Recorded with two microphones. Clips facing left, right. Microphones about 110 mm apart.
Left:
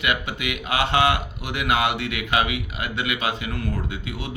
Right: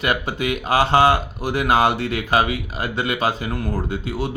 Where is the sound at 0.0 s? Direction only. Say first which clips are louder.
Right 4 dB; 35° right (ahead or behind).